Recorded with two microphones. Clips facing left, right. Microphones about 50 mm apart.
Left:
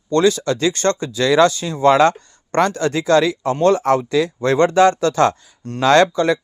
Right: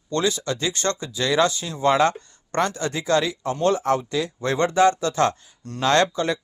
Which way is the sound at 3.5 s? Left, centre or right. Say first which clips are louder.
Left 5 dB; left.